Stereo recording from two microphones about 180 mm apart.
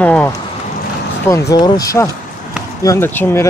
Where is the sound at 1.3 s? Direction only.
15° left (ahead or behind).